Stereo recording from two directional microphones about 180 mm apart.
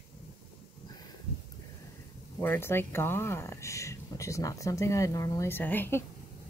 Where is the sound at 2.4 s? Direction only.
10° left (ahead or behind).